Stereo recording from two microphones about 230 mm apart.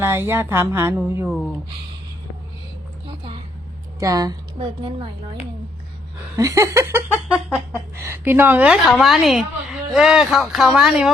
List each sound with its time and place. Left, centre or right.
0.0 s speech: centre
4.0 s a woman's voice: centre
6.3 s a woman's voice: centre